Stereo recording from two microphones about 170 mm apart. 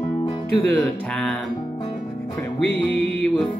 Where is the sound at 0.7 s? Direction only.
5° left (ahead or behind).